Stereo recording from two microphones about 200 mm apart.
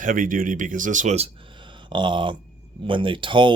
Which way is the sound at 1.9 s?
25° right (ahead or behind).